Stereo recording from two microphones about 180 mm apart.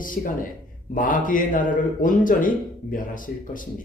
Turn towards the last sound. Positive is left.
turn(degrees=50)  # may be behind; listen again after turning